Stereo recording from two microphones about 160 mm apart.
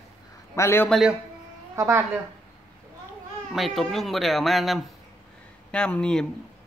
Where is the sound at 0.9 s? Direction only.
Centre (ahead or behind).